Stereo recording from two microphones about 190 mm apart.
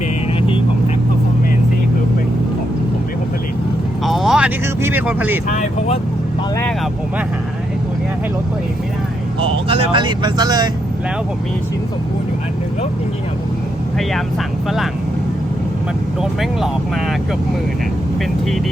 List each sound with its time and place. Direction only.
4.0 s speech: centre (ahead or behind)
5.5 s speech: 40° left (ahead or behind)
9.4 s speech: 30° right (ahead or behind)